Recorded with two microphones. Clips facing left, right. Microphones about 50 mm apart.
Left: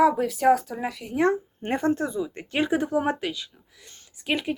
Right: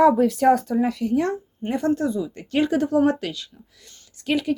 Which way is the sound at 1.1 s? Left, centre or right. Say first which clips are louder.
Even; left.